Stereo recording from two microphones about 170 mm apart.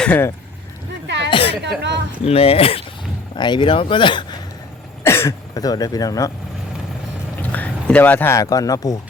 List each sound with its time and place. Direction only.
0.0 s speech: 10° left (ahead or behind)
1.0 s a sound: 90° right
1.3 s a sound: 30° left (ahead or behind)
2.2 s speech: 35° left (ahead or behind)
5.0 s speech: 15° left (ahead or behind)
7.5 s speech: 10° left (ahead or behind)